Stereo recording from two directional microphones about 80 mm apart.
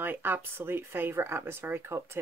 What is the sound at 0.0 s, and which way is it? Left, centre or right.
Speech, right.